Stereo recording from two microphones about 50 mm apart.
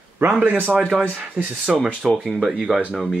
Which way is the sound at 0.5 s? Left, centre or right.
Right.